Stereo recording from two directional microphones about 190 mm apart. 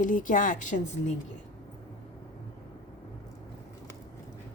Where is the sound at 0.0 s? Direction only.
45° left (ahead or behind).